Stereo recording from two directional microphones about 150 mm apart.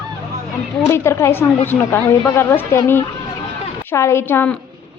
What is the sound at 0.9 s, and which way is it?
A woman's voice, 20° left (ahead or behind).